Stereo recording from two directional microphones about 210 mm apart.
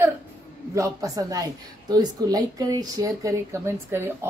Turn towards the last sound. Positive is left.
turn(degrees=-10)  # may be behind; listen again after turning